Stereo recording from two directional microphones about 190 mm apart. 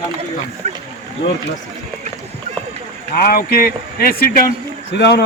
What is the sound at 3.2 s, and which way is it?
Speech, 50° left (ahead or behind).